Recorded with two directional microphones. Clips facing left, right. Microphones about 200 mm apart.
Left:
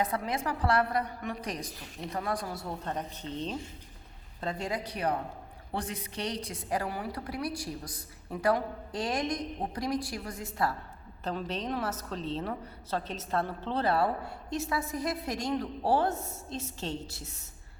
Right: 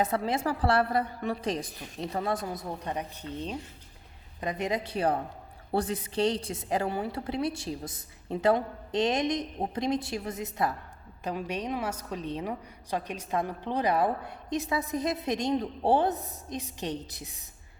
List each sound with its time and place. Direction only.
0.0 s a woman's voice: 30° right (ahead or behind)